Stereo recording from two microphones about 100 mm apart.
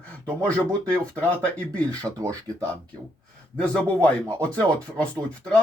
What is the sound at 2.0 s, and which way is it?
Speech, 35° right (ahead or behind).